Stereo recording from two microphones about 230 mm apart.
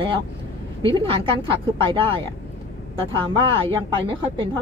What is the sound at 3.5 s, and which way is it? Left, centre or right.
Speech, right.